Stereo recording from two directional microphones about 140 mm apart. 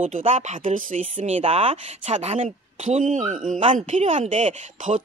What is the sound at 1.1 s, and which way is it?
Speech, 45° right (ahead or behind).